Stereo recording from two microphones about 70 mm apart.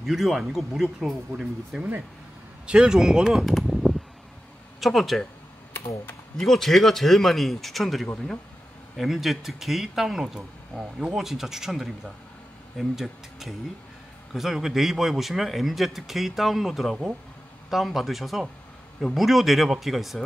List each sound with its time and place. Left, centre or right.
0.0 s a man's voice: centre
1.3 s speech: right
1.8 s speech: centre
6.3 s a man's voice: centre